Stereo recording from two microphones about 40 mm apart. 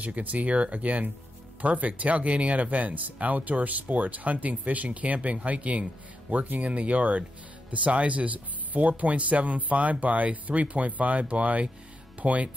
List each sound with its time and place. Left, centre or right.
0.0 s speech: right